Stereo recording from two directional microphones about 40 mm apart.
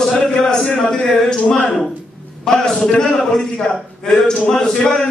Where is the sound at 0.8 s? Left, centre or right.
Left.